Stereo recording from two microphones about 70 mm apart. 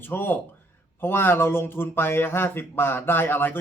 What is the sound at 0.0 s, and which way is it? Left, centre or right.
A man's voice, left.